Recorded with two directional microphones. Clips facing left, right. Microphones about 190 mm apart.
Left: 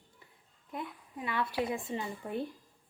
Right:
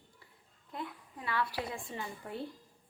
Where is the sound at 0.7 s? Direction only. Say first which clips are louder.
Left 2 dB; 20° left (ahead or behind).